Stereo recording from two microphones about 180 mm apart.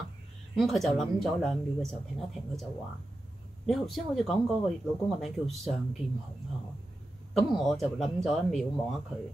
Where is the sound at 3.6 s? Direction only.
Centre (ahead or behind).